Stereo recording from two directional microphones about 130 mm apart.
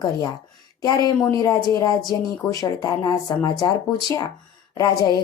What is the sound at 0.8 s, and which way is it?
Speech, 30° left (ahead or behind).